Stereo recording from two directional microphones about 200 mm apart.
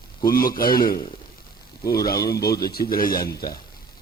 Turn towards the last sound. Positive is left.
turn(degrees=50)  # may be behind; listen again after turning